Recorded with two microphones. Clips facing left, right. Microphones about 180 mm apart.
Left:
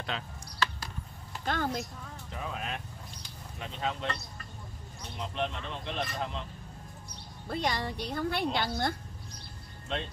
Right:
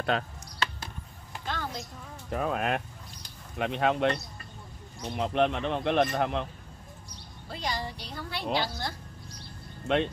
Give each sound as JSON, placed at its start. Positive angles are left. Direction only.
{"t": 0.1, "sound": "speech", "side_deg": -55}
{"t": 1.4, "sound": "a woman's voice", "side_deg": 50}
{"t": 2.2, "sound": "speech", "side_deg": -55}
{"t": 7.4, "sound": "speech", "side_deg": 60}
{"t": 9.9, "sound": "speech", "side_deg": -65}